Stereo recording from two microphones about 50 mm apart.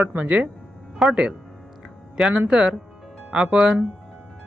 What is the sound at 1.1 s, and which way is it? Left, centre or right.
Speech, centre.